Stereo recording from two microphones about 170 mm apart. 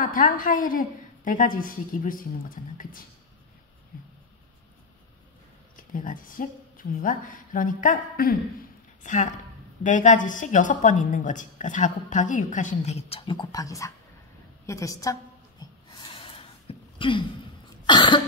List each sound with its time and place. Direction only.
0.0 s a woman's voice: 55° left (ahead or behind)
5.8 s a woman's voice: 50° left (ahead or behind); by 15.1 s 20° left (ahead or behind)
15.9 s a sound: 30° left (ahead or behind)
17.8 s a woman's voice: 25° left (ahead or behind)